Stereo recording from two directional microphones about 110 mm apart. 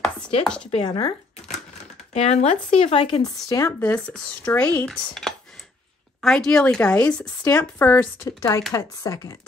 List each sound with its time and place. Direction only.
0.4 s a woman's voice: 10° left (ahead or behind)
0.8 s speech: 45° left (ahead or behind)
2.1 s speech: 85° left; by 3.2 s 65° left (ahead or behind)
3.2 s speech: 35° left (ahead or behind)
3.8 s a woman's voice: 15° left (ahead or behind)
8.3 s speech: 30° left (ahead or behind)